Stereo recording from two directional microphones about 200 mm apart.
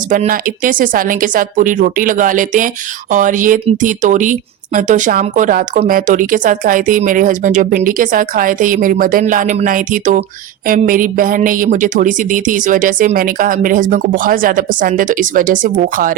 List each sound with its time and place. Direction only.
0.1 s a woman's voice: 45° right (ahead or behind)